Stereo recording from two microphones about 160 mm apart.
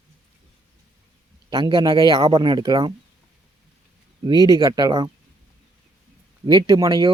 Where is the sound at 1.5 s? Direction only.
30° right (ahead or behind).